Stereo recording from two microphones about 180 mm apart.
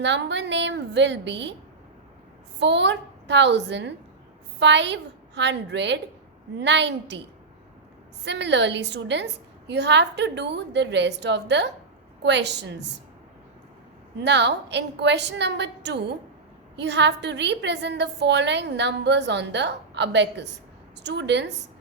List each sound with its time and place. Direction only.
0.0 s a woman's voice: 80° right
2.6 s a woman's voice: 75° right (ahead or behind)
8.2 s a woman's voice: 75° right (ahead or behind)
14.2 s a woman's voice: 75° right (ahead or behind)